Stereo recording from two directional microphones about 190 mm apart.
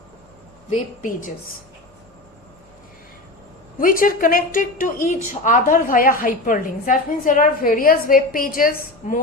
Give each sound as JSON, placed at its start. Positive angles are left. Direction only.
{"t": 0.7, "sound": "a woman's voice", "side_deg": 45}
{"t": 3.8, "sound": "a woman's voice", "side_deg": 45}